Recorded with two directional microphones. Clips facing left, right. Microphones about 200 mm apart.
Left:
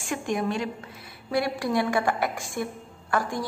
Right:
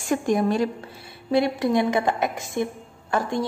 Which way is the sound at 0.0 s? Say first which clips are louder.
Right 6 dB; 40° right (ahead or behind).